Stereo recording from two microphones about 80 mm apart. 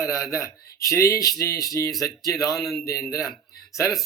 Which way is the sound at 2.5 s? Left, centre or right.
Centre.